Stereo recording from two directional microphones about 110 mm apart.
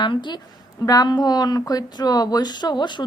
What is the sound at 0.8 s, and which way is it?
A woman's voice, 35° left (ahead or behind).